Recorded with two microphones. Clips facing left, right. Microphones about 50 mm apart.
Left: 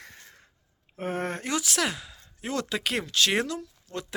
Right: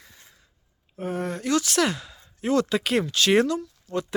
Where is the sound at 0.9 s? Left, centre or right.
Left.